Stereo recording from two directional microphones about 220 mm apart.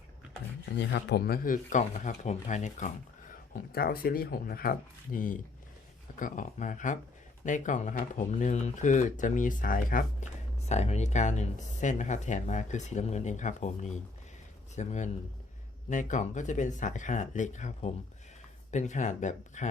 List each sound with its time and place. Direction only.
0.6 s speech: 55° left (ahead or behind); by 19.6 s 35° left (ahead or behind)